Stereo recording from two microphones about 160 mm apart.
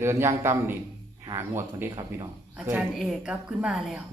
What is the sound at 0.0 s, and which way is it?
Speech, 15° right (ahead or behind).